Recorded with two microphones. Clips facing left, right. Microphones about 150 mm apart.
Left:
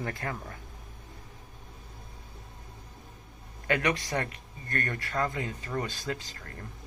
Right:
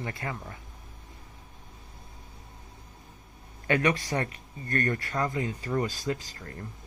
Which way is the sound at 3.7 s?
30° right (ahead or behind).